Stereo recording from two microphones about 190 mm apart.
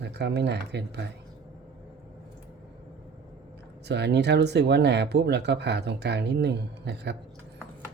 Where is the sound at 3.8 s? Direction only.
65° right (ahead or behind).